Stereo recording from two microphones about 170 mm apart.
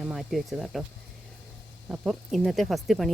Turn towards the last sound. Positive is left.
turn(degrees=0)  # may be behind; listen again after turning